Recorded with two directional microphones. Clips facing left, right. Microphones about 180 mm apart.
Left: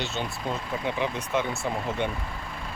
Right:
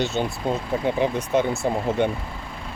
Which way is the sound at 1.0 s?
45° right (ahead or behind).